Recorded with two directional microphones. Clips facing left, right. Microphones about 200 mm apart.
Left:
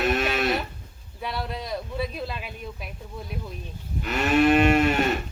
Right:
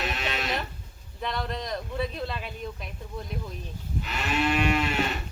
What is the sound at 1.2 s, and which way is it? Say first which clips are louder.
Speech: even; 5° left (ahead or behind).